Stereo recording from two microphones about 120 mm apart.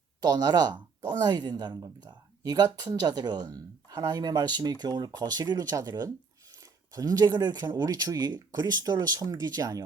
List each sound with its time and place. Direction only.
0.2 s speech: 35° right (ahead or behind)